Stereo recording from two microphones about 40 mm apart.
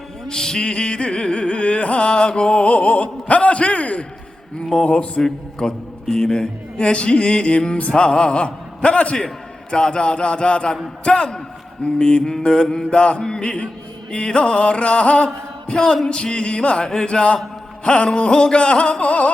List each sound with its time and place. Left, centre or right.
0.3 s music: centre; by 4.0 s left
4.8 s a man's voice: left
5.2 s a man's voice: centre; by 19.3 s left